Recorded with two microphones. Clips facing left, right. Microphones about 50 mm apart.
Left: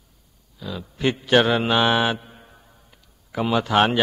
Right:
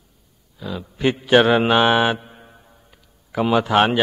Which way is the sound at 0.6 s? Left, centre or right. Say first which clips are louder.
Right 3 dB; centre.